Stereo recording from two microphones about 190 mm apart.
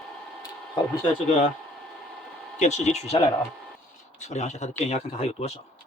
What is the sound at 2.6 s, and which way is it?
Speech, 35° left (ahead or behind).